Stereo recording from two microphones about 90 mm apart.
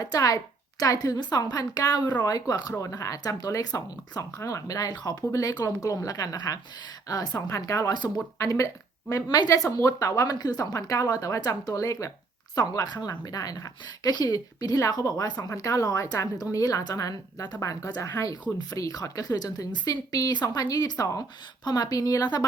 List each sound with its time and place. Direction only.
0.0 s a woman's voice: 40° left (ahead or behind)